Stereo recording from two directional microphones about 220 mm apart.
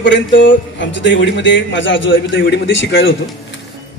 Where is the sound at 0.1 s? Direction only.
55° left (ahead or behind).